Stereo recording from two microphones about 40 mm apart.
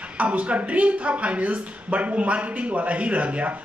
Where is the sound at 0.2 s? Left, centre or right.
Right.